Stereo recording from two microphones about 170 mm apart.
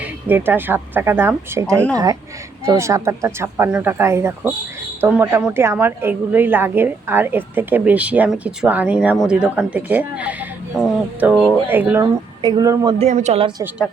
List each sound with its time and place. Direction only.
0.0 s a woman's voice: 10° right (ahead or behind)
12.0 s speech: 25° right (ahead or behind)
13.0 s a woman's voice: 40° right (ahead or behind)